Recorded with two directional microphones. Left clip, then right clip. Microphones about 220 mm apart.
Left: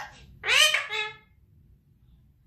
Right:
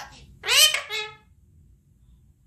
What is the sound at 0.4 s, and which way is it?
Cat, 50° right (ahead or behind).